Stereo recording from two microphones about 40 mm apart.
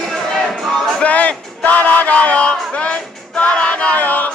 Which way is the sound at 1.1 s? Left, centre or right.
Left.